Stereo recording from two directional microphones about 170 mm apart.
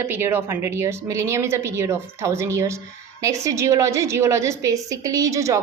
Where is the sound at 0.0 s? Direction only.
15° right (ahead or behind).